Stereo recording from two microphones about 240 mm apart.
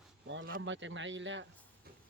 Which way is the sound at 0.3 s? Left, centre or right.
Right.